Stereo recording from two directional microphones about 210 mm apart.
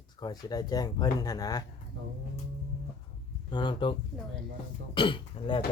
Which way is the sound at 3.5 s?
20° left (ahead or behind).